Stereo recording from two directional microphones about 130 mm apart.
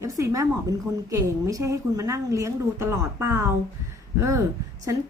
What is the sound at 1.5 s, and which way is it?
A woman's voice, 25° right (ahead or behind).